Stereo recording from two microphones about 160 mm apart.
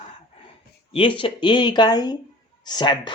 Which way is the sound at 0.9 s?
35° left (ahead or behind).